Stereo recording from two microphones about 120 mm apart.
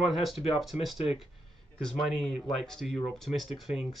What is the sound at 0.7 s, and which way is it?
Speech, 10° right (ahead or behind).